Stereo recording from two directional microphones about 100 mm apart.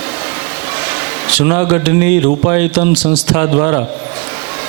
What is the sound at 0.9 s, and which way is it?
Speech, 20° right (ahead or behind).